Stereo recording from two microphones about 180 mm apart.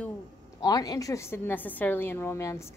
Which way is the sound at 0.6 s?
20° left (ahead or behind).